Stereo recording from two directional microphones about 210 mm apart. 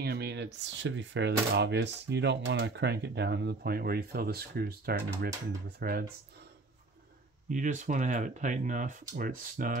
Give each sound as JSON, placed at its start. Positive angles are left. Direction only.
{"t": 0.0, "sound": "speech", "side_deg": -50}
{"t": 7.4, "sound": "speech", "side_deg": -35}